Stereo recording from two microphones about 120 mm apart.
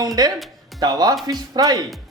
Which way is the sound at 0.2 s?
35° right (ahead or behind).